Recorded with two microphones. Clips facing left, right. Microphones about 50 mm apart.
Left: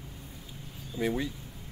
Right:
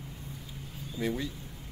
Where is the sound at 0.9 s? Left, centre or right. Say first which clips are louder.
Left 2 dB; centre.